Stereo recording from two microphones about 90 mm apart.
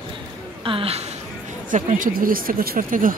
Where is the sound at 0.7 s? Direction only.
90° right.